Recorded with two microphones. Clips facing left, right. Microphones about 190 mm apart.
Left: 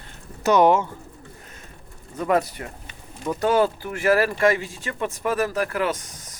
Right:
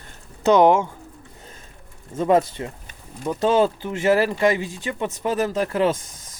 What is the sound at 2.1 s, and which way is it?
Speech, 25° right (ahead or behind).